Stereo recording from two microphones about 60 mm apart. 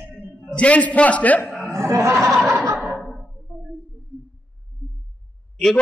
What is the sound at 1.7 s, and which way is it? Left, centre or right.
Speech, right.